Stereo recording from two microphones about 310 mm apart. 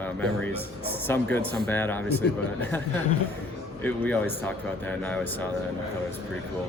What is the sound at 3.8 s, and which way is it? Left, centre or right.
Speech, centre.